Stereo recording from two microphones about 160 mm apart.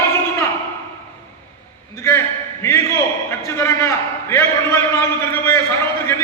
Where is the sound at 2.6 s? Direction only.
15° left (ahead or behind).